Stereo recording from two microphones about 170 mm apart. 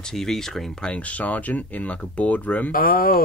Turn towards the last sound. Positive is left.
turn(degrees=55)  # may be behind; listen again after turning